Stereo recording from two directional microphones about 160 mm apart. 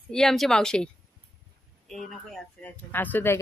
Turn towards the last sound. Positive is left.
turn(degrees=10)  # may be behind; listen again after turning